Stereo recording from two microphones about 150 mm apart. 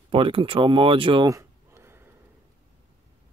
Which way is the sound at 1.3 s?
20° right (ahead or behind).